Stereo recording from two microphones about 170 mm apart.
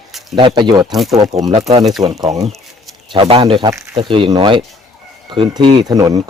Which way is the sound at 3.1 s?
30° right (ahead or behind).